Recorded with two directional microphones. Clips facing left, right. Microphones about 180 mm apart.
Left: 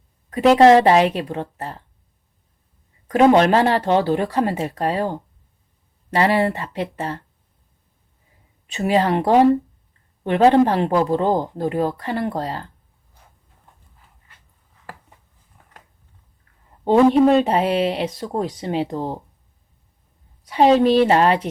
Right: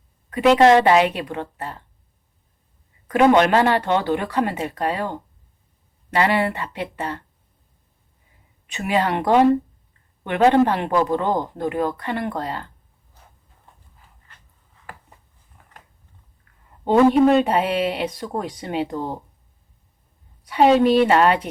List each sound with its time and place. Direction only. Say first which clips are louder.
0.6 s speech: left 3 dB; 35° left (ahead or behind)
3.3 s speech: left 1 dB; 30° left (ahead or behind)
8.6 s speech: left 3 dB; 35° left (ahead or behind)
17.2 s speech: left 1 dB; 30° left (ahead or behind)
20.5 s speech: left 1 dB; 30° left (ahead or behind)